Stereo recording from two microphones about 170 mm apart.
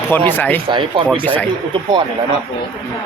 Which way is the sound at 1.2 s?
10° left (ahead or behind).